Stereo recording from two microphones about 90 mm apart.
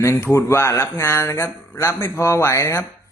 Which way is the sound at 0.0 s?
30° left (ahead or behind).